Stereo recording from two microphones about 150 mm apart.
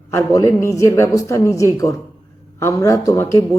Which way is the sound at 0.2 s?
20° left (ahead or behind).